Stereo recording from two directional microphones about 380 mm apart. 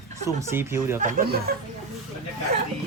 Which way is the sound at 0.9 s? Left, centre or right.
Right.